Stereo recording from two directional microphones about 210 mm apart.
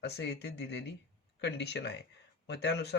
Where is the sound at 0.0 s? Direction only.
50° left (ahead or behind).